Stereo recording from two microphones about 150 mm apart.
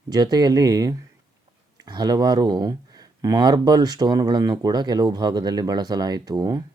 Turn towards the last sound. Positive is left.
turn(degrees=-25)  # may be behind; listen again after turning